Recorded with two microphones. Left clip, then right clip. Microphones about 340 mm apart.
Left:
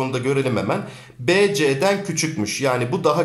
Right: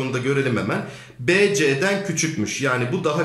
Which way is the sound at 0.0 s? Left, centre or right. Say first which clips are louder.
Left 1 dB; centre.